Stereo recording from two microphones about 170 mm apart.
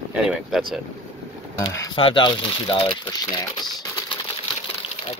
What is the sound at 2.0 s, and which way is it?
Speech, 30° left (ahead or behind).